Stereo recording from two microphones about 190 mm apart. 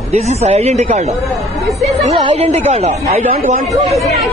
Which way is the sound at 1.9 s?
30° right (ahead or behind).